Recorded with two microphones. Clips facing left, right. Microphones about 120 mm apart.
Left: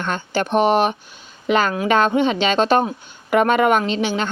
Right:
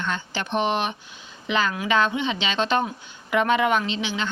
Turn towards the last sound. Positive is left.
turn(degrees=45)  # may be behind; listen again after turning